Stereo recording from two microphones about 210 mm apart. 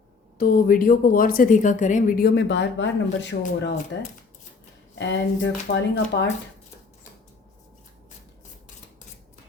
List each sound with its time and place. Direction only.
0.3 s a woman's voice: 40° left (ahead or behind)
4.9 s speech: 60° left (ahead or behind)